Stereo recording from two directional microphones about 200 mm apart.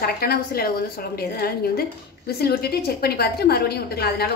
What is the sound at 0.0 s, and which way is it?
A woman's voice, 50° left (ahead or behind).